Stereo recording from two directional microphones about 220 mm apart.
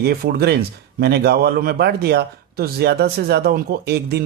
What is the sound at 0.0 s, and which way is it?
Speech, 45° right (ahead or behind).